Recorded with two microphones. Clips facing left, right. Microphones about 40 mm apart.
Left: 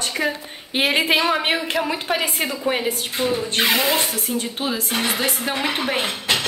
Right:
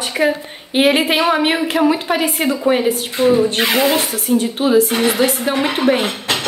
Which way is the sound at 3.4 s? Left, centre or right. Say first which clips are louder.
Right 5 dB; right.